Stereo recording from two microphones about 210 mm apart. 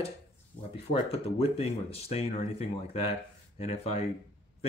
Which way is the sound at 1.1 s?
30° left (ahead or behind).